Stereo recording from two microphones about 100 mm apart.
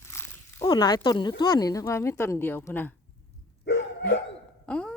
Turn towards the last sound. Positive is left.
turn(degrees=10)  # may be behind; listen again after turning